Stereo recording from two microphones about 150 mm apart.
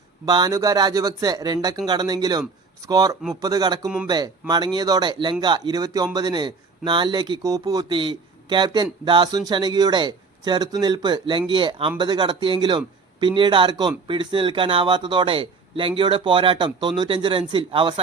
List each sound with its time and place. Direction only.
0.3 s speech: 25° right (ahead or behind)